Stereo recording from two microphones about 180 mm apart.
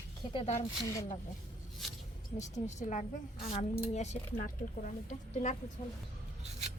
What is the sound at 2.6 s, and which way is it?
A woman's voice, 40° left (ahead or behind).